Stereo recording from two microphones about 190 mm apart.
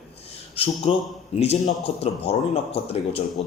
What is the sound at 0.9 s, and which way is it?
A man's voice, 35° left (ahead or behind).